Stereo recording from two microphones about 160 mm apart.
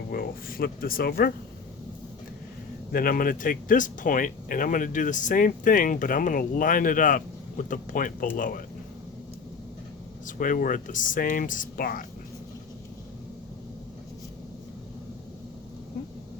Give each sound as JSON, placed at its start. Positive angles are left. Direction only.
{"t": 0.1, "sound": "speech", "side_deg": 65}
{"t": 2.9, "sound": "speech", "side_deg": 60}
{"t": 10.2, "sound": "speech", "side_deg": 60}